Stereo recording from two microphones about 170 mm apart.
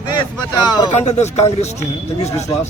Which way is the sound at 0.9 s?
40° left (ahead or behind).